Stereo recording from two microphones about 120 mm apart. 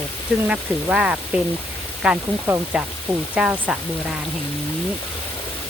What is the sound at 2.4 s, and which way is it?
Speech, 20° right (ahead or behind).